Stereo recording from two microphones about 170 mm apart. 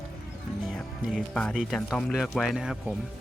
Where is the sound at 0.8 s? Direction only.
Centre (ahead or behind).